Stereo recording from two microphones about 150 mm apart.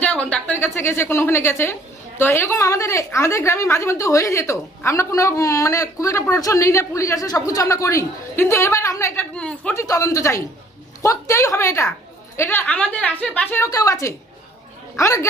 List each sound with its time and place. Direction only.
0.0 s a woman's voice: 10° left (ahead or behind)
9.3 s a woman's voice: 10° left (ahead or behind)
9.7 s a woman's voice: 20° left (ahead or behind)